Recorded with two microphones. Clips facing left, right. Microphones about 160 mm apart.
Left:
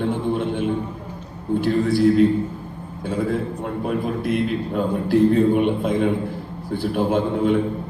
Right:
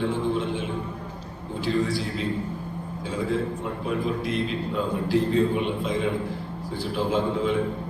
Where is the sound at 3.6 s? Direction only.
55° left (ahead or behind).